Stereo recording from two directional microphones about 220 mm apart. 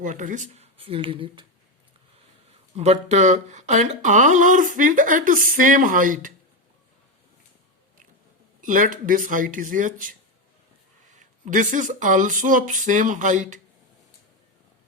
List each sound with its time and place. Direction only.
0.0 s speech: 35° right (ahead or behind)
2.7 s speech: 30° right (ahead or behind)
8.6 s speech: 35° right (ahead or behind)